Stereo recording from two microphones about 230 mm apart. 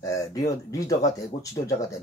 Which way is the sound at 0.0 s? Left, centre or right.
Centre.